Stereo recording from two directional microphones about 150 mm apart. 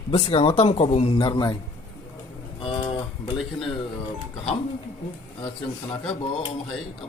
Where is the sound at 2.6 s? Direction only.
35° left (ahead or behind).